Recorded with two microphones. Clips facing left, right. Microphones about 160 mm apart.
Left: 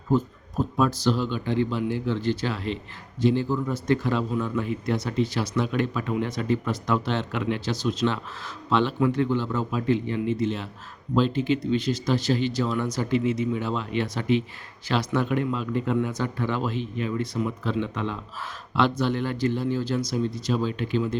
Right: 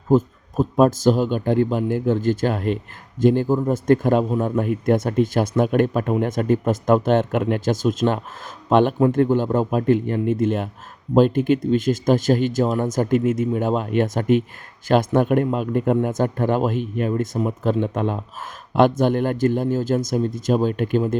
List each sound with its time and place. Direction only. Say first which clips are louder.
0.1 s a man's voice: right 6 dB; 45° right (ahead or behind)